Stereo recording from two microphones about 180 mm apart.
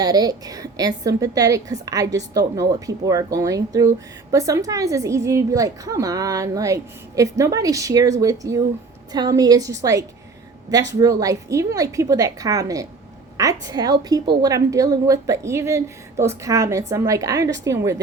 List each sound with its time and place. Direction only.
0.0 s a woman's voice: 20° right (ahead or behind)
11.0 s a woman's voice: 20° right (ahead or behind)